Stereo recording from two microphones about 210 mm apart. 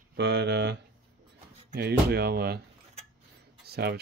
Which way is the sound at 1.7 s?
50° right (ahead or behind).